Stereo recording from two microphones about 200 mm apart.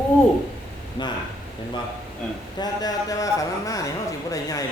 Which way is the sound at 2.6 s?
20° left (ahead or behind).